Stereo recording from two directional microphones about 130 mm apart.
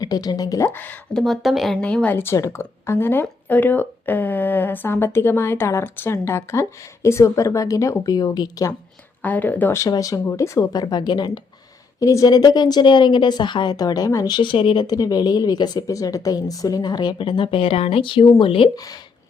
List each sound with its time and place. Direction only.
0.0 s speech: 30° left (ahead or behind)
0.8 s a woman's voice: 15° left (ahead or behind)
1.2 s a woman's voice: centre (ahead or behind); by 8.7 s 30° left (ahead or behind)
9.2 s a woman's voice: 15° left (ahead or behind); by 14.8 s 45° left (ahead or behind)
14.8 s a woman's voice: 30° left (ahead or behind)